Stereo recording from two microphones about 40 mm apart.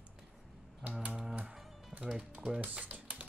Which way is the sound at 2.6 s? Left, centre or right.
Right.